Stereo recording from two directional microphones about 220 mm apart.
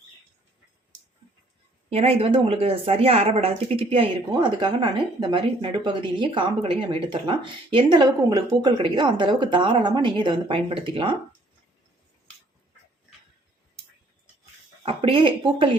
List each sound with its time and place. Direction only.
1.9 s speech: 30° right (ahead or behind)
14.8 s speech: 25° right (ahead or behind)